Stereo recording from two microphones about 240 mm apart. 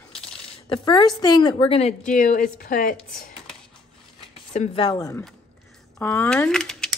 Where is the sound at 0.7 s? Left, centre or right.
Centre; by 3.0 s left.